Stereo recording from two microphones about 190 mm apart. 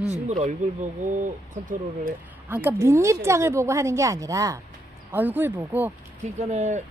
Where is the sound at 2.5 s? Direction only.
10° right (ahead or behind).